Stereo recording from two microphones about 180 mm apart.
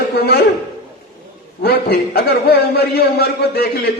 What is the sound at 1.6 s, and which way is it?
A man's voice, 60° left (ahead or behind).